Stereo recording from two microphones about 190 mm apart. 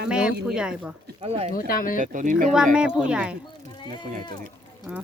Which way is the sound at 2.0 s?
40° right (ahead or behind).